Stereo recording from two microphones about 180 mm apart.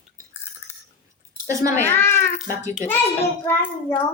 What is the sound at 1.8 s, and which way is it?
Speech, 10° left (ahead or behind).